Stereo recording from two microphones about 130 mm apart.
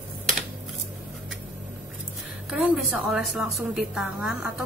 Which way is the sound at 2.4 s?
5° right (ahead or behind).